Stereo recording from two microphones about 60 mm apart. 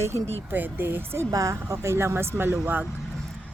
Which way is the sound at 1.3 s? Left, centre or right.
Right.